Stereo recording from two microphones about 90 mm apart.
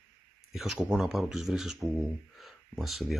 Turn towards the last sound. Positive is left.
turn(degrees=0)  # may be behind; listen again after turning